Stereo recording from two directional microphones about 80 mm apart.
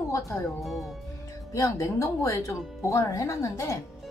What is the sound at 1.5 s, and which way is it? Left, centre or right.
Speech, left.